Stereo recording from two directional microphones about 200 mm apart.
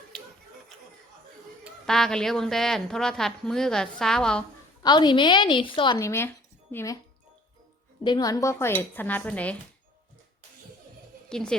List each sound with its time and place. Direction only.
0.1 s a sound: 5° left (ahead or behind)
1.6 s a woman's voice: centre (ahead or behind)
4.8 s a woman's voice: 20° left (ahead or behind)
8.0 s speech: 20° left (ahead or behind)
11.3 s a woman's voice: 5° left (ahead or behind)